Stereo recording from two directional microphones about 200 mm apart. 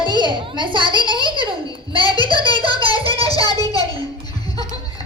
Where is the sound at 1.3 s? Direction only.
25° right (ahead or behind).